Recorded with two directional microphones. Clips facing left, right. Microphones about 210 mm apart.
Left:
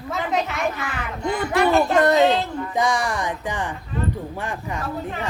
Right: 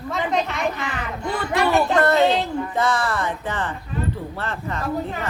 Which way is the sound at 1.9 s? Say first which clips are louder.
Even; 15° left (ahead or behind).